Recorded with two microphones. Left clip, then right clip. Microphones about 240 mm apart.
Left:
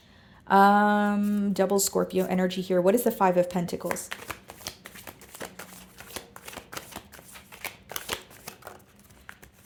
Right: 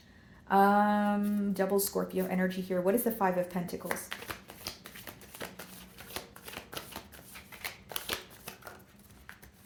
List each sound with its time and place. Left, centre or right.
0.4 s speech: left
4.1 s shuffling cards: left